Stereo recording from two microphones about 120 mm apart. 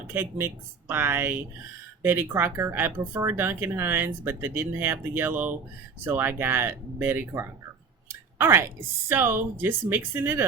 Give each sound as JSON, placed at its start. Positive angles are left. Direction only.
{"t": 0.1, "sound": "speech", "side_deg": -20}